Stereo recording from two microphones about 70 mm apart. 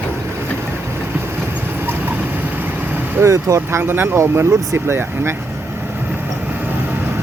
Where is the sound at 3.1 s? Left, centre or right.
Right.